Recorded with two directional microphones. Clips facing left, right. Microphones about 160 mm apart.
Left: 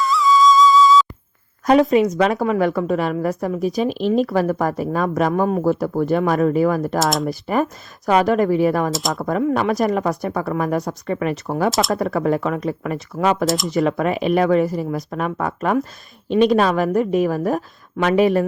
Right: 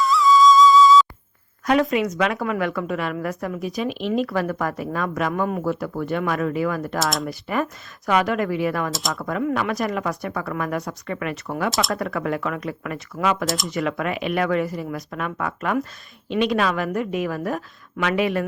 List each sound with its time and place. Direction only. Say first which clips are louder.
0.0 s music: even; centre (ahead or behind)
1.9 s a woman's voice: left 6 dB; 35° left (ahead or behind)
7.0 s speech: left 3 dB; centre (ahead or behind)
7.3 s a woman's voice: left 5 dB; 35° left (ahead or behind)
8.9 s speech: left 5 dB; centre (ahead or behind)
9.1 s a woman's voice: left 4 dB; 40° left (ahead or behind)
11.7 s speech: left 4 dB; centre (ahead or behind)
11.9 s a woman's voice: left 6 dB; 35° left (ahead or behind)